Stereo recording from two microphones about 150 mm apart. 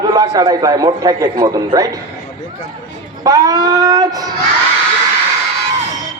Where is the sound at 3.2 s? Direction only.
25° right (ahead or behind).